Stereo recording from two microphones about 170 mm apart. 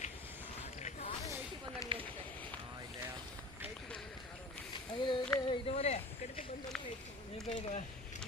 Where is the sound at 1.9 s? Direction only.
30° right (ahead or behind).